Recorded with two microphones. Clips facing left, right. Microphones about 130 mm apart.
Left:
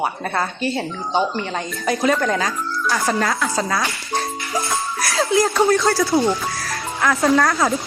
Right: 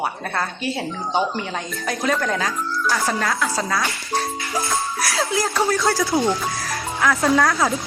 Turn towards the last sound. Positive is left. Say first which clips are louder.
# left 1 dB
turn(degrees=0)  # may be behind; listen again after turning